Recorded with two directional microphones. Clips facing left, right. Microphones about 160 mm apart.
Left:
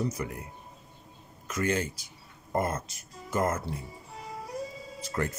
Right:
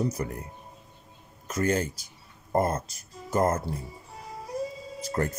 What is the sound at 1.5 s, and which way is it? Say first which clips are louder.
Speech: right 3 dB; 40° right (ahead or behind).